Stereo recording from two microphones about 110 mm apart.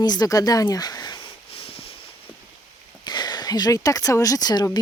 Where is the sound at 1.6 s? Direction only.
60° left (ahead or behind).